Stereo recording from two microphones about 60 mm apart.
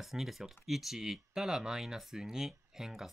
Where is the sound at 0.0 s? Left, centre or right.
Centre.